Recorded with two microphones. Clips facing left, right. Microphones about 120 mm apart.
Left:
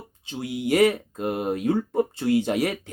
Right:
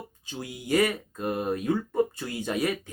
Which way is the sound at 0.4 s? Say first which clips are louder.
Left 4 dB; 80° left.